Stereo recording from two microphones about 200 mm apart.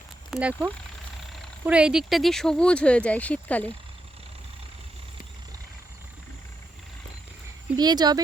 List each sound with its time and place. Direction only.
0.3 s speech: 5° right (ahead or behind)
7.8 s speech: 20° right (ahead or behind)